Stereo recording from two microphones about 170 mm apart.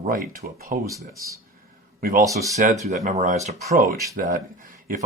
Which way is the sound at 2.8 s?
45° right (ahead or behind).